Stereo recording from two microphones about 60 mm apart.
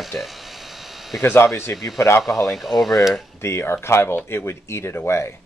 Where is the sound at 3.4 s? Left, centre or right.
Left.